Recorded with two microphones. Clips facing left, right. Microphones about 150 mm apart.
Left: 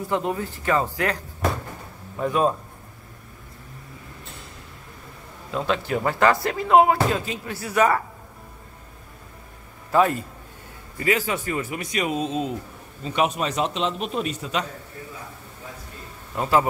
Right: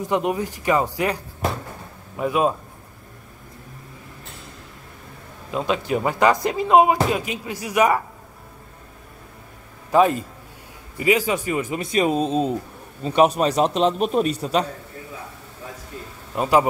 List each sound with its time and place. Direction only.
0.0 s speech: 15° right (ahead or behind)
5.5 s speech: 15° right (ahead or behind)
9.8 s a man's voice: 15° right (ahead or behind); by 14.7 s 35° right (ahead or behind)
16.3 s speech: 15° right (ahead or behind)